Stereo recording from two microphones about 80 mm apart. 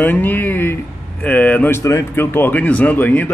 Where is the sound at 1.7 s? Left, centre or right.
Left; by 3.3 s centre.